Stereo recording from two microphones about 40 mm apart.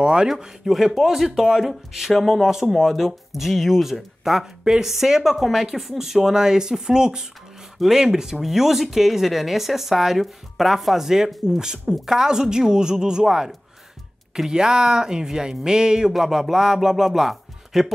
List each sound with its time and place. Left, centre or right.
0.0 s speech: right
0.3 s speech: centre
16.1 s speech: centre